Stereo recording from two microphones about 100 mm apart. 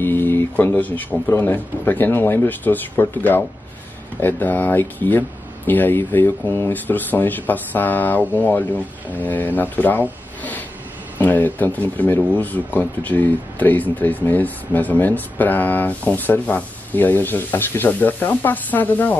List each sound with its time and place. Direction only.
0.0 s a man's voice: 20° left (ahead or behind)
11.1 s speech: 20° left (ahead or behind)